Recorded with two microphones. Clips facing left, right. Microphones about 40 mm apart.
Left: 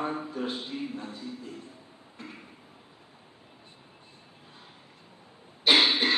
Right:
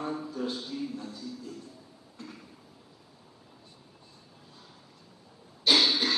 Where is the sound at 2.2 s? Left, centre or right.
Left.